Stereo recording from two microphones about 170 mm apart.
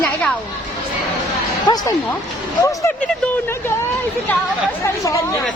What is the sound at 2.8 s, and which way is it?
Speech, 5° left (ahead or behind).